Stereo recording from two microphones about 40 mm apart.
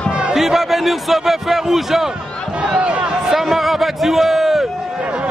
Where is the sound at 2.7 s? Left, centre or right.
Right.